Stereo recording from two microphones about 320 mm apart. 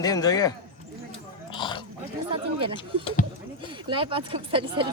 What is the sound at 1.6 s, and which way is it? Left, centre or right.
Dog, centre.